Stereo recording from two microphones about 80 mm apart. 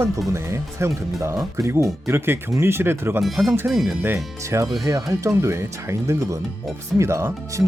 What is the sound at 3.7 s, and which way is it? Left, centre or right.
Speech, centre.